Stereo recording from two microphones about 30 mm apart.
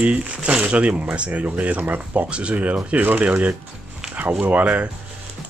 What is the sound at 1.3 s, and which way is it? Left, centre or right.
Speech, right.